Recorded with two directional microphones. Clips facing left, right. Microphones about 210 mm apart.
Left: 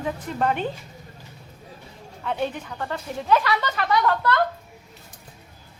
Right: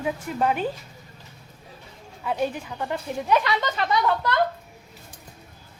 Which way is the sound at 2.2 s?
5° right (ahead or behind).